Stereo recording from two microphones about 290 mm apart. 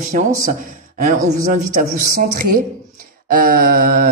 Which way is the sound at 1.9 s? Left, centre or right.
Right.